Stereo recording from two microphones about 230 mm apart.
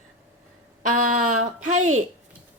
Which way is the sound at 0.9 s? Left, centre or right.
Right.